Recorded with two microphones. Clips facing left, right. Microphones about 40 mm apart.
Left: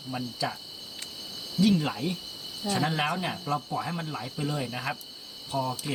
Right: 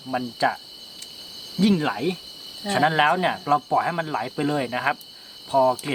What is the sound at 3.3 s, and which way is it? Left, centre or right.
Speech, right.